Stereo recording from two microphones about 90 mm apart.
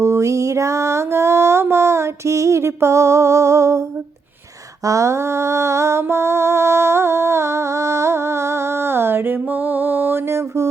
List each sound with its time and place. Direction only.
0.0 s mantra: 35° right (ahead or behind)
4.9 s mantra: 35° right (ahead or behind)